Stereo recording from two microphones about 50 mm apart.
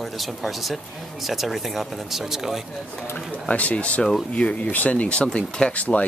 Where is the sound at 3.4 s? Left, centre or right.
Left.